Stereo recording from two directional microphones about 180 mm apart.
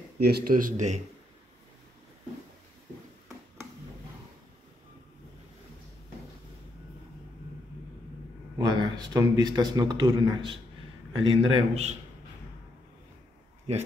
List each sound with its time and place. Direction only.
0.2 s speech: 60° right (ahead or behind); by 1.0 s 40° right (ahead or behind)
8.5 s a man's voice: 25° right (ahead or behind)
11.2 s a man's voice: 35° right (ahead or behind)